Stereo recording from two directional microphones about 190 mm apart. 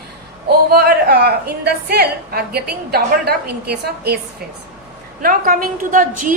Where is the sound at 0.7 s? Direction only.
55° right (ahead or behind).